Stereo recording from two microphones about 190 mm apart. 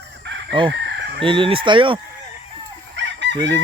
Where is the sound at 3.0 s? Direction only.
70° right (ahead or behind).